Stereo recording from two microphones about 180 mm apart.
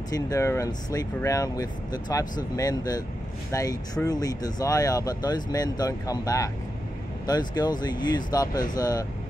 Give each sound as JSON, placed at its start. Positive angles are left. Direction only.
{"t": 0.1, "sound": "speech", "side_deg": 15}